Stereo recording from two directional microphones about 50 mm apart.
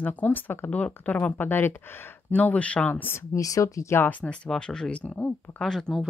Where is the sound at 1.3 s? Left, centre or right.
Left.